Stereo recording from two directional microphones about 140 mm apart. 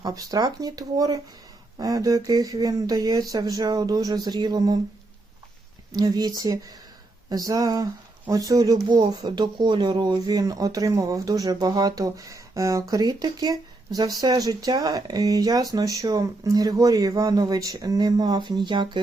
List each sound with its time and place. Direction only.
0.0 s speech: 25° right (ahead or behind)
5.9 s speech: 30° right (ahead or behind)